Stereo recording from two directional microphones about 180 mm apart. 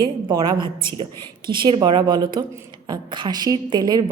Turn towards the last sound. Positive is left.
turn(degrees=-20)  # may be behind; listen again after turning